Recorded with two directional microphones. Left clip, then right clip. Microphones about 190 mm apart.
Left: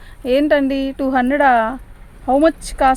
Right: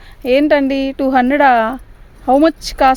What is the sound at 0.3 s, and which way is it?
A woman's voice, 40° right (ahead or behind).